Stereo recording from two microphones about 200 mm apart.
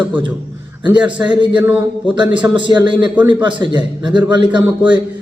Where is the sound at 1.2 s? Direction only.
25° right (ahead or behind).